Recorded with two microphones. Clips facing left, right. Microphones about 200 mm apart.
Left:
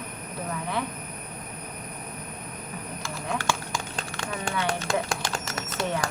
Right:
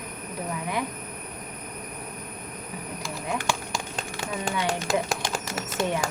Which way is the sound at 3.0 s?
15° right (ahead or behind).